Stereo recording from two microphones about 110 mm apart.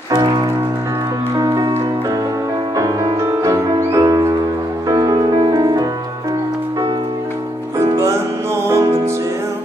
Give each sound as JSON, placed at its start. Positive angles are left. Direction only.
{"t": 0.1, "sound": "music", "side_deg": -40}
{"t": 2.7, "sound": "music", "side_deg": -30}
{"t": 7.8, "sound": "music", "side_deg": -30}